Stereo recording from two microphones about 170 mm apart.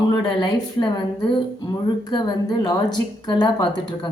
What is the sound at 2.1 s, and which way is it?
A woman's voice, 25° left (ahead or behind).